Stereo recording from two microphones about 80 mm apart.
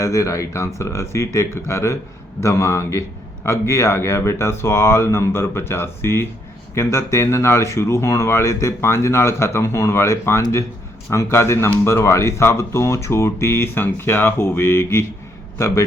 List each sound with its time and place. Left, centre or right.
0.0 s speech: left